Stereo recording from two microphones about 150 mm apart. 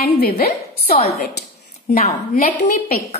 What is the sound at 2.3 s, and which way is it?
Speech, 75° left (ahead or behind).